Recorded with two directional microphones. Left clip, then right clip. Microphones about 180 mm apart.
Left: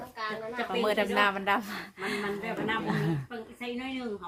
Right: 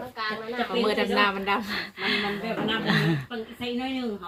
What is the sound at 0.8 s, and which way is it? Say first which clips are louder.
Speech: right 2 dB; 55° left (ahead or behind).